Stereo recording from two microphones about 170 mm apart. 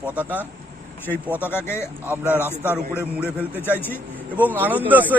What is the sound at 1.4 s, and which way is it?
Speech, 10° left (ahead or behind).